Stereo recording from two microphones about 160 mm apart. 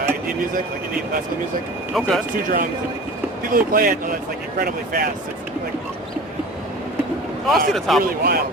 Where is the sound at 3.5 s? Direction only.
60° right (ahead or behind).